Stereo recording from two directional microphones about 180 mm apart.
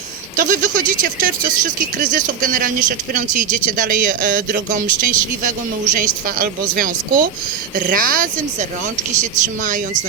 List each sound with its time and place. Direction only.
0.3 s speech: 45° right (ahead or behind)
9.6 s speech: 45° right (ahead or behind)